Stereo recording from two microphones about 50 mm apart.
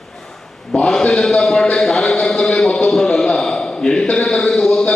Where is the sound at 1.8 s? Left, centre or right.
Centre.